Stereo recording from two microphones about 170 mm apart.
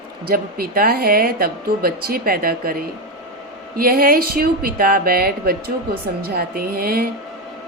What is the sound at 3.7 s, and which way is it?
Speech, 60° right (ahead or behind).